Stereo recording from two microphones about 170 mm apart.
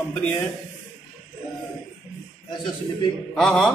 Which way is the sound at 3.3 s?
5° left (ahead or behind).